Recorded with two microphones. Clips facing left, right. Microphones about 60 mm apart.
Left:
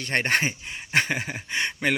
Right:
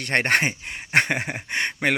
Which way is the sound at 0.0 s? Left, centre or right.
Right.